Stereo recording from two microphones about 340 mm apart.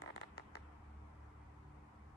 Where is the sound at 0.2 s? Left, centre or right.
Left.